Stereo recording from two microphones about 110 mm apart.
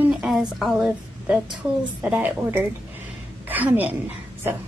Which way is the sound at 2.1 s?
15° right (ahead or behind).